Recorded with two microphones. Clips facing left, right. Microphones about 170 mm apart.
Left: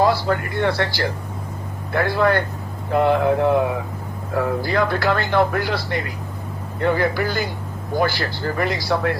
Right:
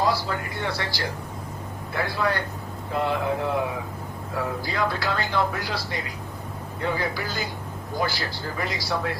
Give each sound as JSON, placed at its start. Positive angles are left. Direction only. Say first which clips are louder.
{"t": 0.0, "sound": "speech", "louder": "left 6 dB", "side_deg": 60}